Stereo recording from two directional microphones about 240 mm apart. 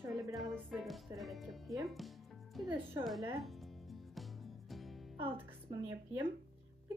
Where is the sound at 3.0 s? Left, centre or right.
Centre.